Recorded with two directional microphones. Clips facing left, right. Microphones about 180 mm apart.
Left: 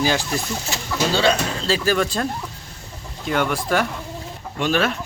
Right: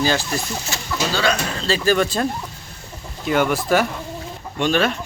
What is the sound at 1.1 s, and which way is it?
Speech, 30° left (ahead or behind).